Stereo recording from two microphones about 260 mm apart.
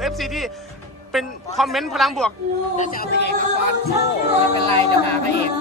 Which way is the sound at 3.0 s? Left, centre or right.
Left.